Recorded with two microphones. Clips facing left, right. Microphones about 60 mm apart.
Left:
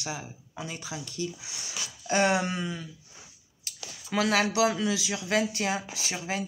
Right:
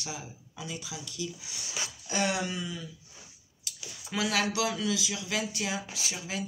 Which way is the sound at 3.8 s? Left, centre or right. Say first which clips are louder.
Left 4 dB; left.